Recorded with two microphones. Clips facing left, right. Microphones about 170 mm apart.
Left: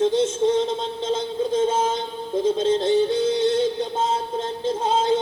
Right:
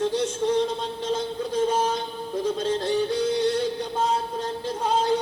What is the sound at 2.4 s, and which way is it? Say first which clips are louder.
Yodeling: left 5 dB; 25° left (ahead or behind).